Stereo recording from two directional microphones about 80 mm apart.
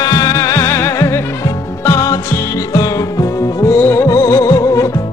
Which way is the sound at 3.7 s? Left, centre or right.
Left.